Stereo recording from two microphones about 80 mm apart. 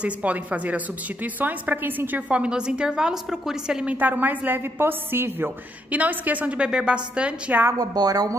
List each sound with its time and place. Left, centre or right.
0.0 s a woman's voice: centre
4.0 s a woman's voice: right
7.7 s a woman's voice: right